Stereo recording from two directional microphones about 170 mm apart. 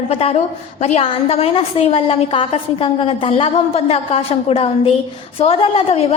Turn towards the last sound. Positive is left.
turn(degrees=35)  # may be behind; listen again after turning